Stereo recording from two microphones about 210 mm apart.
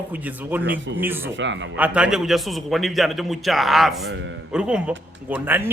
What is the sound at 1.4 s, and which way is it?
Speech, 60° right (ahead or behind).